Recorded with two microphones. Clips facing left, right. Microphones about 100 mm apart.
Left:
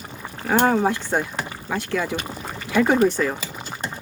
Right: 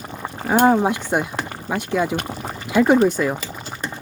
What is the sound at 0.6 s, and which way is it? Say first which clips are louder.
Speech: right 4 dB; 15° right (ahead or behind).